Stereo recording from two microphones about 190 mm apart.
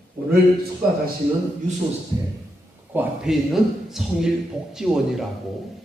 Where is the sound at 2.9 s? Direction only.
5° right (ahead or behind).